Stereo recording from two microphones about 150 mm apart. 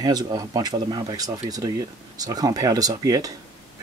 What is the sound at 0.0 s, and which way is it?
Speech, 25° right (ahead or behind).